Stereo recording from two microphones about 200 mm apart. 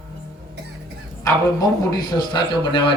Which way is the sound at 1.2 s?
15° left (ahead or behind).